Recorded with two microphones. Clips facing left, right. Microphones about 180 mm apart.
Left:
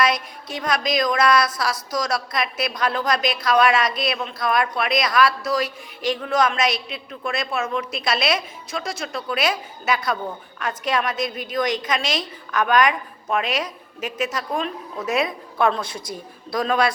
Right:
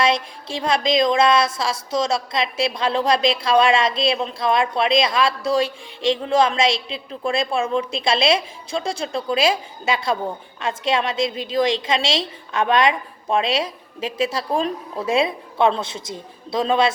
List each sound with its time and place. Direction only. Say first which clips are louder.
0.0 s a woman's voice: right 2 dB; 25° right (ahead or behind)